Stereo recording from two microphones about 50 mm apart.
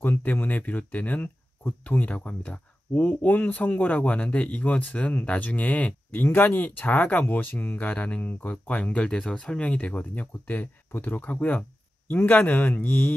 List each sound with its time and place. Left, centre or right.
0.0 s speech: left
3.1 s speech: left
6.1 s speech: left
7.0 s speech: left